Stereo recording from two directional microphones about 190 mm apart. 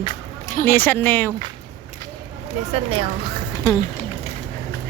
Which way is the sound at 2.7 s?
30° right (ahead or behind).